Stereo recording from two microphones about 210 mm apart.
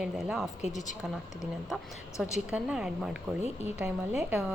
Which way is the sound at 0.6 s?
35° left (ahead or behind).